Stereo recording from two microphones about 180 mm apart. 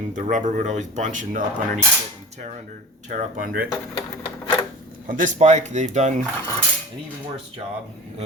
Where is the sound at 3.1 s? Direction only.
50° right (ahead or behind).